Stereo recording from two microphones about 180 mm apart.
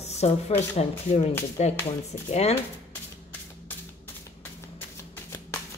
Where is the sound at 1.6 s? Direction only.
40° left (ahead or behind).